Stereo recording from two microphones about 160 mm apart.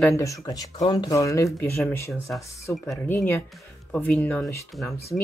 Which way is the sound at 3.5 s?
5° left (ahead or behind).